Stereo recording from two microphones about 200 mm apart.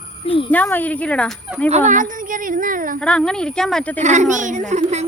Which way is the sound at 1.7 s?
35° right (ahead or behind).